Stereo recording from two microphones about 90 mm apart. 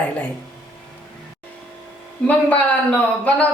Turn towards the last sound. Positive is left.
turn(degrees=15)  # may be behind; listen again after turning